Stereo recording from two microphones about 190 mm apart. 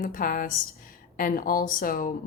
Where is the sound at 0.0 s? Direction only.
45° left (ahead or behind).